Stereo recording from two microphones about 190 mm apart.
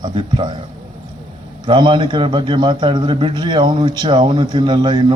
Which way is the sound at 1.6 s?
25° right (ahead or behind).